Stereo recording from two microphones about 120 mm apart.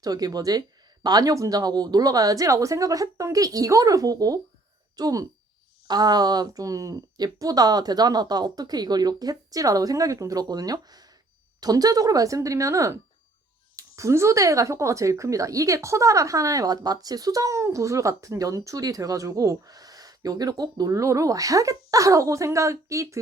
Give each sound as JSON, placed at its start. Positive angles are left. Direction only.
{"t": 0.0, "sound": "speech", "side_deg": -30}